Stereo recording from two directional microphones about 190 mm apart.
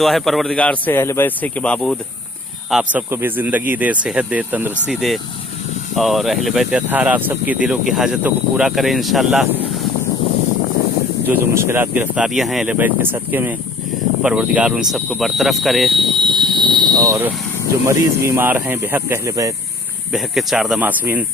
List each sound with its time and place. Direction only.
0.0 s speech: centre (ahead or behind)
11.3 s speech: 10° right (ahead or behind)
16.0 s a sound: 25° right (ahead or behind)
17.8 s speech: 15° right (ahead or behind)
20.1 s speech: centre (ahead or behind)